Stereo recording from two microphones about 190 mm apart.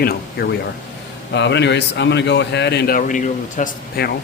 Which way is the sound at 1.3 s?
65° left (ahead or behind).